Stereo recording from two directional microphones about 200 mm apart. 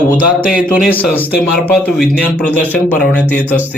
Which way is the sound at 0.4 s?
45° left (ahead or behind).